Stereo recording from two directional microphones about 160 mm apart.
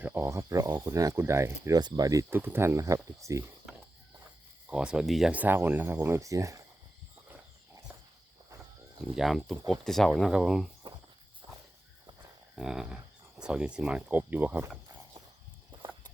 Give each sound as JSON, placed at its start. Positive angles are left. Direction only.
{"t": 0.0, "sound": "speech", "side_deg": -15}
{"t": 4.7, "sound": "speech", "side_deg": -5}
{"t": 9.1, "sound": "speech", "side_deg": 0}
{"t": 12.5, "sound": "speech", "side_deg": 0}
{"t": 15.7, "sound": "a sound", "side_deg": -30}